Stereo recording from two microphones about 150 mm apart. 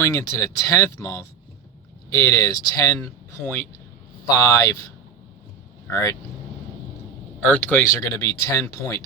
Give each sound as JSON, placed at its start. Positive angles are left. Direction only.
{"t": 0.0, "sound": "speech", "side_deg": 20}
{"t": 5.9, "sound": "speech", "side_deg": 25}
{"t": 7.4, "sound": "speech", "side_deg": 10}